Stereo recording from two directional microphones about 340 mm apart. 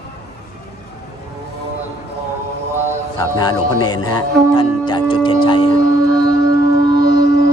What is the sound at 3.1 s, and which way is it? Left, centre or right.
A man's voice, centre.